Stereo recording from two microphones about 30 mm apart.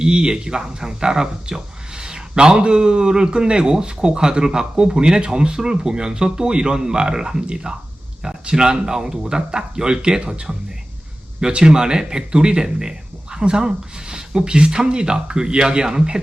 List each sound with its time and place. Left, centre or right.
0.0 s speech: right
11.3 s speech: right